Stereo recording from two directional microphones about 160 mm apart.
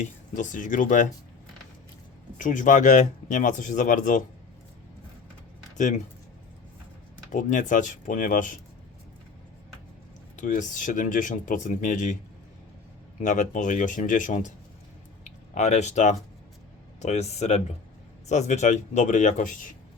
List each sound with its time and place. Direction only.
0.0 s speech: 50° left (ahead or behind)
2.4 s speech: 55° left (ahead or behind)
5.7 s speech: 50° left (ahead or behind)
7.3 s speech: 55° left (ahead or behind)
10.3 s speech: 55° left (ahead or behind)
13.2 s speech: 50° left (ahead or behind)